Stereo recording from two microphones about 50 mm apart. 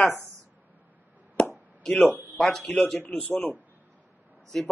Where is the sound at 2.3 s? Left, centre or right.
Centre.